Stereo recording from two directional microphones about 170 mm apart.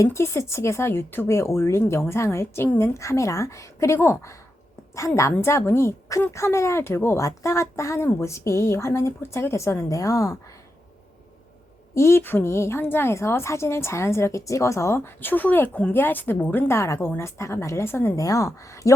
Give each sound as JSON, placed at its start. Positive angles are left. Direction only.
{"t": 0.0, "sound": "a woman's voice", "side_deg": 15}
{"t": 11.9, "sound": "a woman's voice", "side_deg": 15}